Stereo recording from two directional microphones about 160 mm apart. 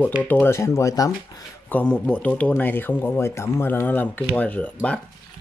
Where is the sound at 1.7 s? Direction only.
10° left (ahead or behind).